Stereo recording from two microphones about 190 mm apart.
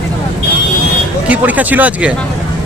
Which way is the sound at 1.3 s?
10° right (ahead or behind).